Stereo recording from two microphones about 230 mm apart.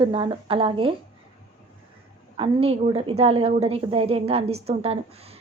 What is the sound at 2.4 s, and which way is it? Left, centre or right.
Speech, right.